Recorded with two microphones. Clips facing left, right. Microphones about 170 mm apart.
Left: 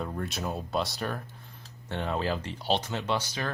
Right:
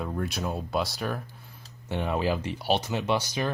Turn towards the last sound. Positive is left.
turn(degrees=-15)  # may be behind; listen again after turning